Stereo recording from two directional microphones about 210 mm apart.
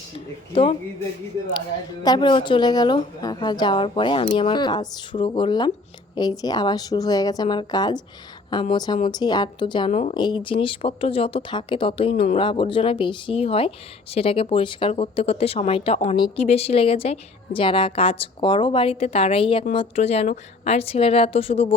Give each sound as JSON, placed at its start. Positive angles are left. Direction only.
{"t": 0.5, "sound": "speech", "side_deg": 25}
{"t": 2.0, "sound": "speech", "side_deg": 20}
{"t": 9.9, "sound": "speech", "side_deg": 35}
{"t": 10.2, "sound": "speech", "side_deg": 20}